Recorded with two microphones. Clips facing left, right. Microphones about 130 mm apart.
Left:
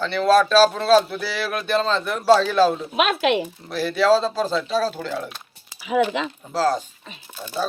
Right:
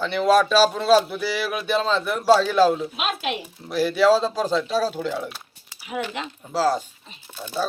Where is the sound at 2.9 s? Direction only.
75° left (ahead or behind).